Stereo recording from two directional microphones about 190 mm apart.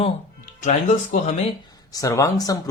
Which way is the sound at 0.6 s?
40° left (ahead or behind).